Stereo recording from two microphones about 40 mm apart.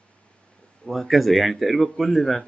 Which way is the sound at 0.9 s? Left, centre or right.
Centre.